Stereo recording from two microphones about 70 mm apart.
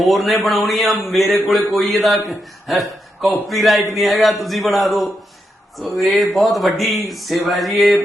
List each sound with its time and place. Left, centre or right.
0.0 s a man's voice: centre